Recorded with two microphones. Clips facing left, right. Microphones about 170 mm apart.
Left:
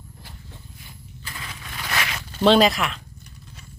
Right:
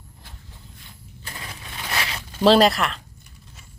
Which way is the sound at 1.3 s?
30° right (ahead or behind).